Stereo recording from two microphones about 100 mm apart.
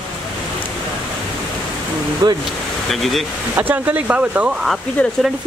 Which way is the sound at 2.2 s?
45° right (ahead or behind).